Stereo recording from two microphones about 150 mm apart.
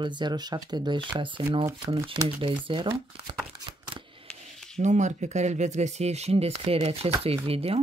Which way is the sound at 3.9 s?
35° right (ahead or behind).